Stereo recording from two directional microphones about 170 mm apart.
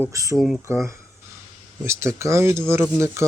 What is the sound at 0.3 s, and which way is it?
Speech, centre (ahead or behind).